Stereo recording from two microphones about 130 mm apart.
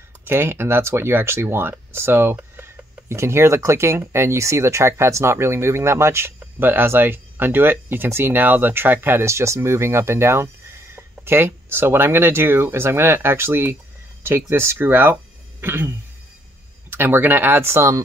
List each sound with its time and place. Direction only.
0.2 s speech: 20° right (ahead or behind)
16.9 s speech: 15° right (ahead or behind)